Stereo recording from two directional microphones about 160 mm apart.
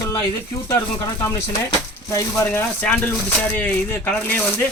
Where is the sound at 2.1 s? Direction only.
15° left (ahead or behind).